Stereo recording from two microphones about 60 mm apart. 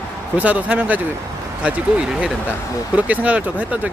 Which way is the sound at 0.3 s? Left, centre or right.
Right.